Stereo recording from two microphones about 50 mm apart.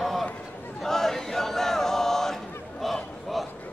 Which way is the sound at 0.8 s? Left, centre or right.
Centre.